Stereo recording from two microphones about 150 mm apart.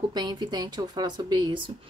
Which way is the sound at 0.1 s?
30° right (ahead or behind).